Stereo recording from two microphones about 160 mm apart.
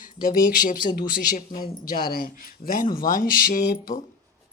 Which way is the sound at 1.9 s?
65° left (ahead or behind).